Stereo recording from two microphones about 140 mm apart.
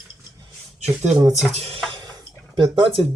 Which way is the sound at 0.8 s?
55° right (ahead or behind).